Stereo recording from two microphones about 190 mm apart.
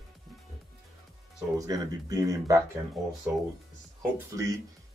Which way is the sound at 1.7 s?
20° right (ahead or behind).